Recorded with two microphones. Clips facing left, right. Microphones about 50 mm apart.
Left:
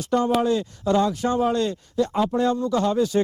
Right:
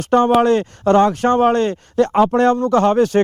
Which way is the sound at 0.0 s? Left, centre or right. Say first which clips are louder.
Right 8 dB; right.